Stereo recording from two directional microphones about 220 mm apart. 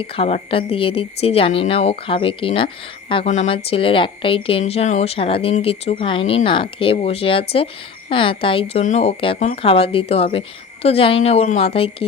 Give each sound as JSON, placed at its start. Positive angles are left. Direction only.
{"t": 0.0, "sound": "a woman's voice", "side_deg": 25}